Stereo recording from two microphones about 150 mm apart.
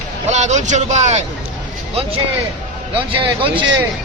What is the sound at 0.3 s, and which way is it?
Speech, 50° right (ahead or behind).